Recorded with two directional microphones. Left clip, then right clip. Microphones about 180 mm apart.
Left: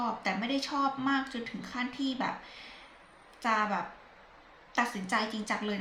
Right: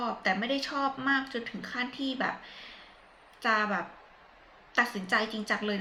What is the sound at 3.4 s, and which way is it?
Speech, 15° left (ahead or behind).